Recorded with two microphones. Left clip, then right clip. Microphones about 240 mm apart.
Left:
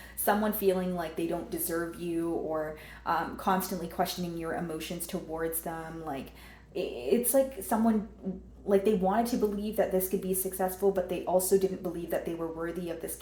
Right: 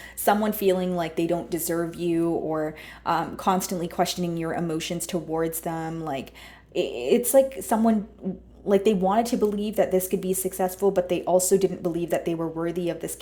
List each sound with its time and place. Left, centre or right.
0.3 s a woman's voice: right